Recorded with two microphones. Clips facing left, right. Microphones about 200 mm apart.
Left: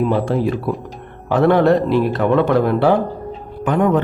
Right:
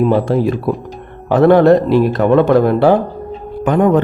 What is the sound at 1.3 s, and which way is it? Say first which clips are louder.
Speech: right 5 dB; 40° right (ahead or behind).